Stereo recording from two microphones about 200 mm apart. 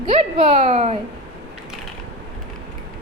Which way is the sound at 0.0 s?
30° right (ahead or behind).